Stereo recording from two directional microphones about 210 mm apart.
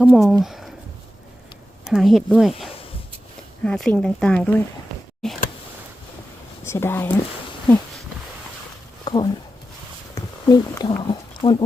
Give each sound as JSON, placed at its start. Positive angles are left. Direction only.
{"t": 0.0, "sound": "speech", "side_deg": -5}
{"t": 0.4, "sound": "a sound", "side_deg": 0}
{"t": 1.8, "sound": "speech", "side_deg": 0}
{"t": 6.7, "sound": "speech", "side_deg": 10}
{"t": 9.0, "sound": "speech", "side_deg": 20}